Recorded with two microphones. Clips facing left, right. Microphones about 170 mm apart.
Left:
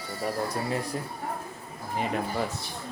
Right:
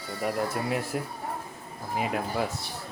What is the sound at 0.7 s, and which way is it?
Speech, 5° right (ahead or behind).